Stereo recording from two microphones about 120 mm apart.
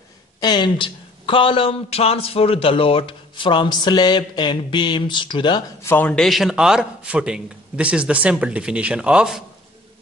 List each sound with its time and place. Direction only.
0.4 s speech: 35° left (ahead or behind)
5.9 s a man's voice: 15° left (ahead or behind)
6.1 s a man's voice: centre (ahead or behind)